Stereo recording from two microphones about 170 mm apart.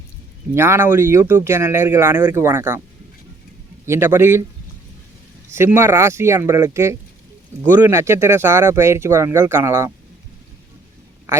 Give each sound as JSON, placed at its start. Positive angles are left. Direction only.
{"t": 0.5, "sound": "speech", "side_deg": -15}
{"t": 3.8, "sound": "speech", "side_deg": -15}
{"t": 5.5, "sound": "speech", "side_deg": -15}